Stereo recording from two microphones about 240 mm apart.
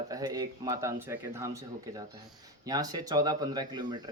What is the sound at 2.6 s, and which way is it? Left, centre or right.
Speech, centre.